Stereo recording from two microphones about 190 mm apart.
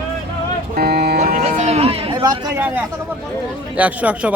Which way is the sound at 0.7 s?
55° right (ahead or behind).